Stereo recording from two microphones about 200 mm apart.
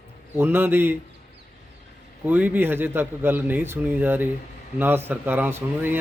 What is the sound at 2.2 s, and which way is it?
Speech, 10° right (ahead or behind).